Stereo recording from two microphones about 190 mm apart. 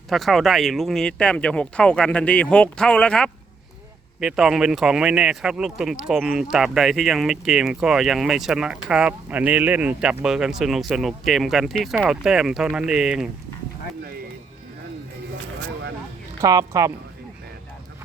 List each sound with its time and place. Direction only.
0.1 s speech: centre (ahead or behind)
16.4 s speech: 15° right (ahead or behind)